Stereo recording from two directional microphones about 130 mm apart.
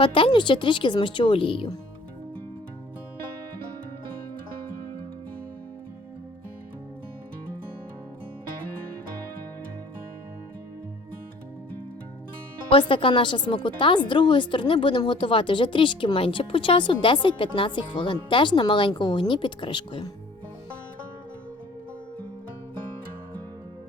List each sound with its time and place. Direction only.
0.0 s speech: 40° left (ahead or behind)
12.7 s speech: 40° left (ahead or behind)